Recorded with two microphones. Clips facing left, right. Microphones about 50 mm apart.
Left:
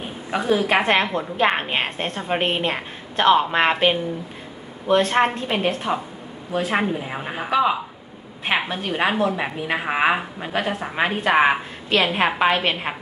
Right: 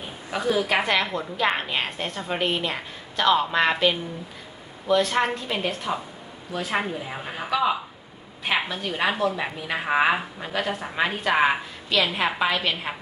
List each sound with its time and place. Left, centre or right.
0.3 s a woman's voice: left